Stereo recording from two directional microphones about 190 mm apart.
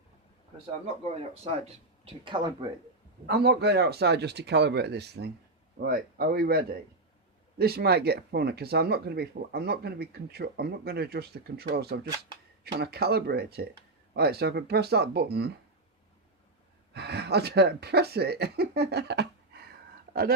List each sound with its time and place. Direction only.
1.0 s speech: 30° right (ahead or behind)
3.2 s speech: 55° right (ahead or behind)
16.9 s speech: 60° right (ahead or behind)